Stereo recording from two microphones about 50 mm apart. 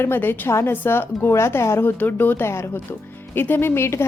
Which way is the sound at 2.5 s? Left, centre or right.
Left.